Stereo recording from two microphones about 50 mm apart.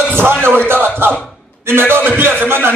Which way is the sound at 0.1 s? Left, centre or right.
Right.